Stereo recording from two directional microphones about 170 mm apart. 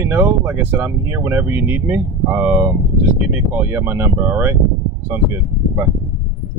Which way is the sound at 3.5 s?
15° right (ahead or behind).